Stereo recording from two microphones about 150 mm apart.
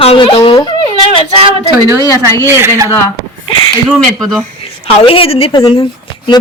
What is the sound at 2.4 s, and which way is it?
Speech, 15° right (ahead or behind).